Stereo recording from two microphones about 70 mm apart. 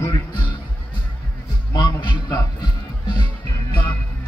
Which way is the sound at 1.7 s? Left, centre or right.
Left.